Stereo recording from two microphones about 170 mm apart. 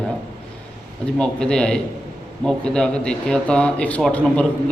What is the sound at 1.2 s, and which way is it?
A man's voice, 5° left (ahead or behind).